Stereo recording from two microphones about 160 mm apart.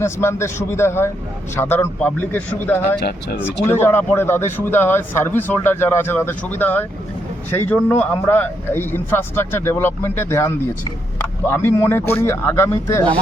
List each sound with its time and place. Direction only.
0.0 s speech: 15° left (ahead or behind)
3.0 s speech: 75° left (ahead or behind)
3.6 s speech: 15° left (ahead or behind)